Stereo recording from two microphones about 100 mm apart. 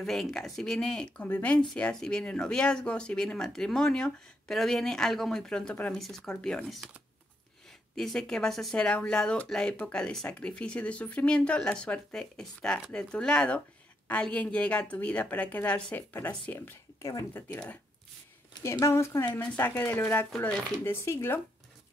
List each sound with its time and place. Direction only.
0.0 s speech: 5° left (ahead or behind)
7.9 s speech: 5° left (ahead or behind); by 17.6 s 25° left (ahead or behind)
18.6 s speech: 30° left (ahead or behind)